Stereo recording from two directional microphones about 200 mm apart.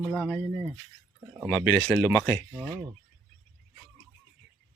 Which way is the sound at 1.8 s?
10° left (ahead or behind).